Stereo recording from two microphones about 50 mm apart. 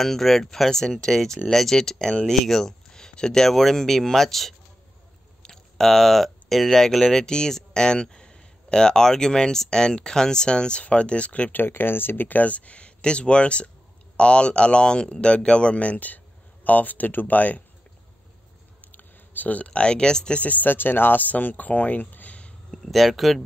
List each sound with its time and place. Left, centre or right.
0.0 s speech: centre; by 11.5 s left
11.5 s speech: left
18.9 s speech: left; by 20.3 s centre
20.3 s speech: left
22.7 s speech: centre